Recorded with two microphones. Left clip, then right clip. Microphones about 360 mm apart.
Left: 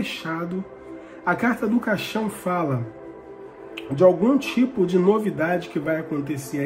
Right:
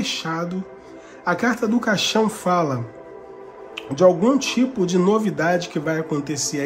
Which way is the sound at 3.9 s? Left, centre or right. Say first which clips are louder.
Right 1 dB; centre.